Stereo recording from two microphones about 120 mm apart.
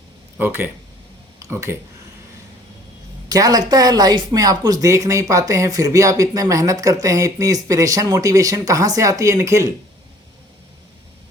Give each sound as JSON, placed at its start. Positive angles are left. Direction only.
{"t": 0.3, "sound": "speech", "side_deg": -20}
{"t": 3.2, "sound": "speech", "side_deg": -30}